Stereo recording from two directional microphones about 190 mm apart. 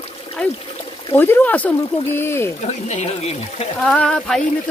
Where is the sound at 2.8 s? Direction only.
35° left (ahead or behind).